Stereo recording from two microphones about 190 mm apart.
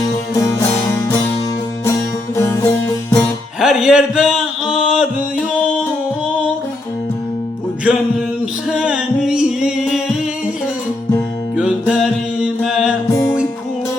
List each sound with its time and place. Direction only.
0.3 s music: 15° left (ahead or behind)
3.6 s music: 5° right (ahead or behind)
8.7 s music: 5° right (ahead or behind)
11.5 s music: 5° right (ahead or behind)